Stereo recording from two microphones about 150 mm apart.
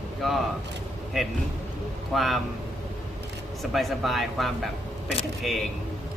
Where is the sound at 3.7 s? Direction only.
Centre (ahead or behind).